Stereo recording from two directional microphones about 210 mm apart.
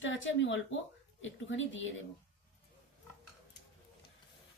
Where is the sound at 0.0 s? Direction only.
60° left (ahead or behind).